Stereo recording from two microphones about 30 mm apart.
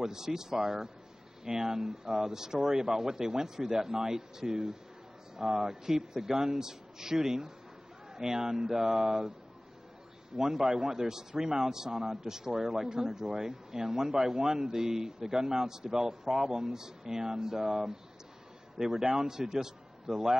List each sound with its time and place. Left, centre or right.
0.0 s speech: centre
10.3 s a man's voice: centre